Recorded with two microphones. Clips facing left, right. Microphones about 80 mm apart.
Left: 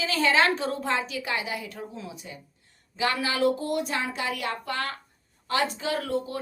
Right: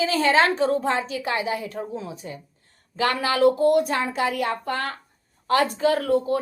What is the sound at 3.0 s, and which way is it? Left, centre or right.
Speech, right.